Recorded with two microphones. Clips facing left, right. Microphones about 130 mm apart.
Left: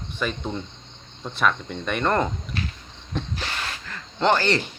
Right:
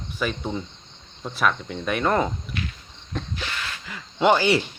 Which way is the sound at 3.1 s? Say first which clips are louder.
Left 2 dB; centre (ahead or behind).